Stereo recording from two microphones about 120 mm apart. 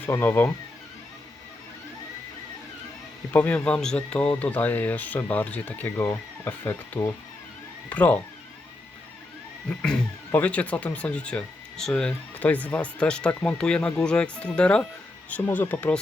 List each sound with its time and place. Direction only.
0.0 s speech: 20° left (ahead or behind)
3.3 s speech: 10° left (ahead or behind)
9.6 s speech: 10° left (ahead or behind)